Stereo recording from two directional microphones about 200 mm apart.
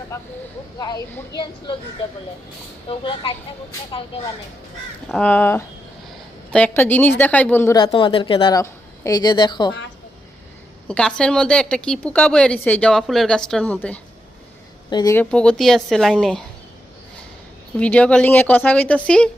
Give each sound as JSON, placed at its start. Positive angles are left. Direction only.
{"t": 0.1, "sound": "a woman's voice", "side_deg": 15}
{"t": 2.9, "sound": "a woman's voice", "side_deg": 25}
{"t": 5.0, "sound": "a woman's voice", "side_deg": 5}
{"t": 7.8, "sound": "a woman's voice", "side_deg": 25}
{"t": 10.8, "sound": "a woman's voice", "side_deg": 5}
{"t": 14.8, "sound": "speech", "side_deg": 20}
{"t": 15.1, "sound": "a woman's voice", "side_deg": 5}
{"t": 17.7, "sound": "a woman's voice", "side_deg": 5}